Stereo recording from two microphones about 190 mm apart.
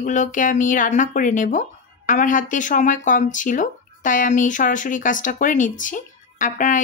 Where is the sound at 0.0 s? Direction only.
40° left (ahead or behind).